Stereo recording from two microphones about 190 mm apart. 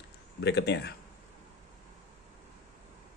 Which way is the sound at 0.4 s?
60° left (ahead or behind).